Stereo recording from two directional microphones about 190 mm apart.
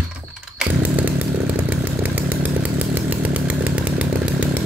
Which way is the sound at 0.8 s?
10° right (ahead or behind).